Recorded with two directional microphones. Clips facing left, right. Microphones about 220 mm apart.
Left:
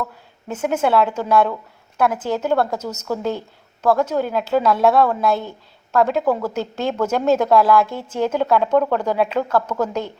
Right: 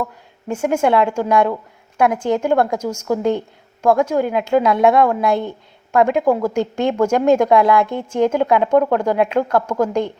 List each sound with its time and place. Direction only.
0.0 s a woman's voice: 10° right (ahead or behind)